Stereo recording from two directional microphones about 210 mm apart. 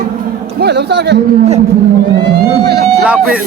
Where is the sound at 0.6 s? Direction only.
50° right (ahead or behind).